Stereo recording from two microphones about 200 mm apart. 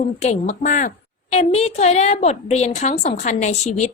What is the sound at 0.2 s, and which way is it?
A woman's voice, 35° left (ahead or behind).